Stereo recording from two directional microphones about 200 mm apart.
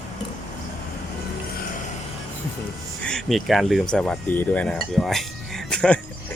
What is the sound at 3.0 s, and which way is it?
Speech, centre (ahead or behind).